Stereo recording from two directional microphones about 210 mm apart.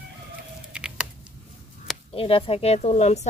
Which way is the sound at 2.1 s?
25° left (ahead or behind).